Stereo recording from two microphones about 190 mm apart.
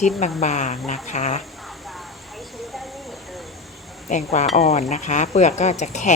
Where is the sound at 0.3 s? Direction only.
35° left (ahead or behind).